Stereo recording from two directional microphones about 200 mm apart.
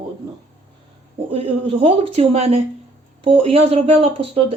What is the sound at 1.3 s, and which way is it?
Speech, 30° right (ahead or behind).